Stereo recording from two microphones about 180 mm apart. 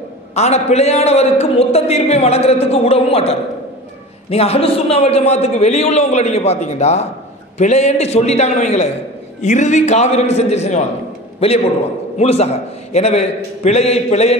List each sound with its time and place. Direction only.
0.3 s a man's voice: 35° left (ahead or behind)